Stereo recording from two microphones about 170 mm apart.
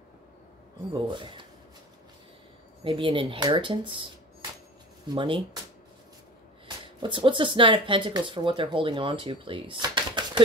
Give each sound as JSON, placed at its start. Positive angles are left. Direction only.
{"t": 0.9, "sound": "speech", "side_deg": -30}
{"t": 2.8, "sound": "speech", "side_deg": -30}
{"t": 7.0, "sound": "speech", "side_deg": -30}